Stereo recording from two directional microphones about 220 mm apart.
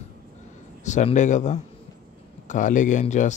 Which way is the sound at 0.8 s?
35° left (ahead or behind).